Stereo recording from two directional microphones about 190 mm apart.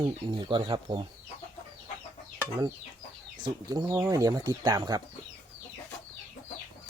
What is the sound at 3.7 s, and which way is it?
Speech, 20° right (ahead or behind).